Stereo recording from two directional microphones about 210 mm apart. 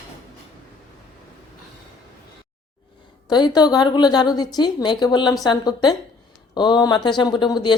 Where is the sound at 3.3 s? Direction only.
20° left (ahead or behind).